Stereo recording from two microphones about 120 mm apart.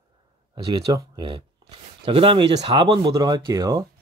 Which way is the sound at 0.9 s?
35° right (ahead or behind).